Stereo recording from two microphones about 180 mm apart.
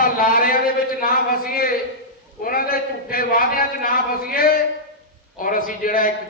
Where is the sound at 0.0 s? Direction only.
55° left (ahead or behind).